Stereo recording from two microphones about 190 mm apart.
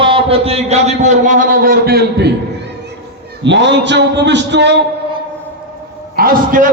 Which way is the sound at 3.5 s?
70° right (ahead or behind).